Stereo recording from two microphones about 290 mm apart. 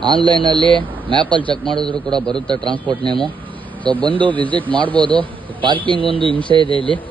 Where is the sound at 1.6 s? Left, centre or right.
Centre.